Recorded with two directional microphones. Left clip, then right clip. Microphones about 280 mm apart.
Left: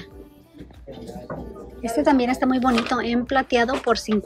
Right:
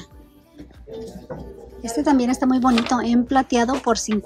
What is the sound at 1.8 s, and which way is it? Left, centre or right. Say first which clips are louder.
Speech: left 1 dB; centre.